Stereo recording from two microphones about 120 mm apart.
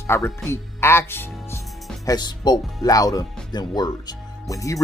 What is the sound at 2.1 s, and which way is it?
Speech, 35° left (ahead or behind).